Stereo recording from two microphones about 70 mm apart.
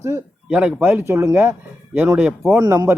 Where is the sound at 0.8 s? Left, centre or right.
Right.